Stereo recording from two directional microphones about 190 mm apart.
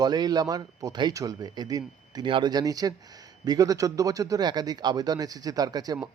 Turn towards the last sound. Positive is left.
turn(degrees=-20)  # may be behind; listen again after turning